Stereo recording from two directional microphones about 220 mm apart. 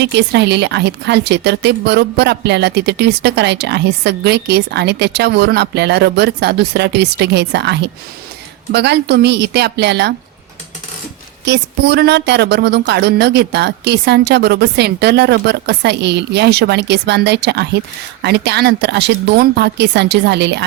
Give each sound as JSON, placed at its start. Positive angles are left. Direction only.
{"t": 0.0, "sound": "a woman's voice", "side_deg": -50}
{"t": 11.4, "sound": "a woman's voice", "side_deg": -50}